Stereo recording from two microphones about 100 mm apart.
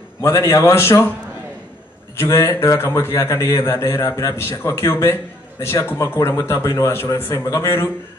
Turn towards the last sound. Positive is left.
turn(degrees=25)  # may be behind; listen again after turning